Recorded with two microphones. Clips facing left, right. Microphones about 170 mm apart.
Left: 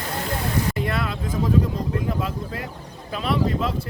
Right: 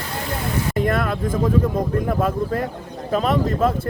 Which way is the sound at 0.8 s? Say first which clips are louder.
Right 5 dB; 50° right (ahead or behind).